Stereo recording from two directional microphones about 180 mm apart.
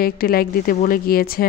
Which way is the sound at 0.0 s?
55° left (ahead or behind).